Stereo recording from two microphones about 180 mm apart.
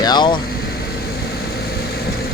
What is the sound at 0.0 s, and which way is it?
Speech, 25° left (ahead or behind).